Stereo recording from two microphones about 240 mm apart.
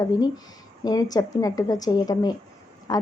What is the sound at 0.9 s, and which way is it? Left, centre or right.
A woman's voice, centre.